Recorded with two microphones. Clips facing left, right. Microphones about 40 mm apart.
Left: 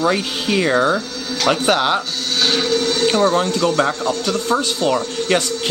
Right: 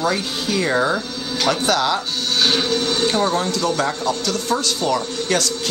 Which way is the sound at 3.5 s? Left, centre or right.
Left.